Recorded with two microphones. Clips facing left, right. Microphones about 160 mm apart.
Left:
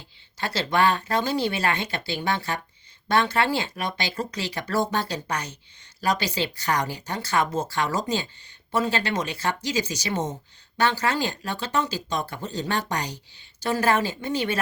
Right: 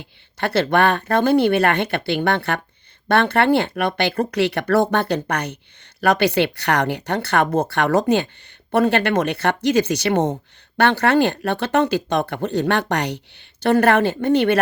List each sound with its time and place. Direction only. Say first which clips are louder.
0.0 s speech: right 7 dB; 60° right (ahead or behind)